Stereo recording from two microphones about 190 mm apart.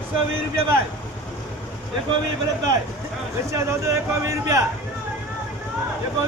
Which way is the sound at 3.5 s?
15° right (ahead or behind).